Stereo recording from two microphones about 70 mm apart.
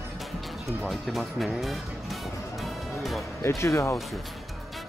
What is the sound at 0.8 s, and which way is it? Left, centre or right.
Speech, centre.